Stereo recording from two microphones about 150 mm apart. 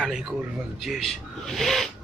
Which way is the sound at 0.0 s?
Centre (ahead or behind).